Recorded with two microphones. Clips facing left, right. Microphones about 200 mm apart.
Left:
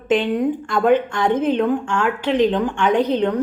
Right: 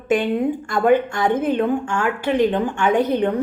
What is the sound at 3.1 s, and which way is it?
Speech, 50° right (ahead or behind).